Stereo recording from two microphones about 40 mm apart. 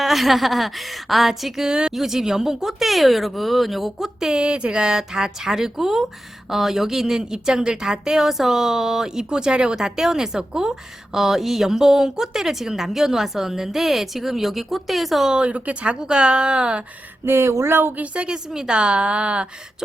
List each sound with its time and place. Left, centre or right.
0.0 s speech: centre
1.6 s speech: right
2.0 s speech: centre
4.2 s a woman's voice: centre
15.3 s speech: right
16.0 s speech: right
17.2 s speech: right
17.9 s a woman's voice: right
18.5 s a woman's voice: centre
18.8 s speech: right